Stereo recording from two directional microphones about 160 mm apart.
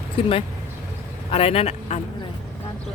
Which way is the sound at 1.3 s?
40° left (ahead or behind).